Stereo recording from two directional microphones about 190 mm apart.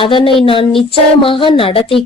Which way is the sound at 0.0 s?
25° left (ahead or behind).